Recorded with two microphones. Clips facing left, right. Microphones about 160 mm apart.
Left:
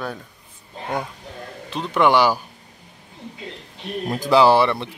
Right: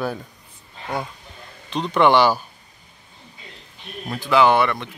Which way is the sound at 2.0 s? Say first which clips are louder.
Right 1 dB; 10° left (ahead or behind).